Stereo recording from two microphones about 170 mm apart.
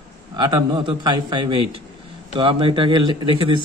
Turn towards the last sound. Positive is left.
turn(degrees=-30)  # may be behind; listen again after turning